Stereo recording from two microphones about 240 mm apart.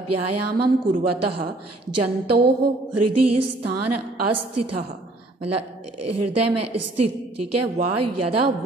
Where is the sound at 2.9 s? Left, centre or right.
Right.